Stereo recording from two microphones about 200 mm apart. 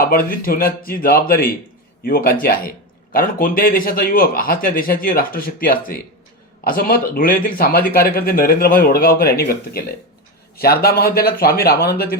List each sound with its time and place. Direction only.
0.0 s speech: 50° left (ahead or behind)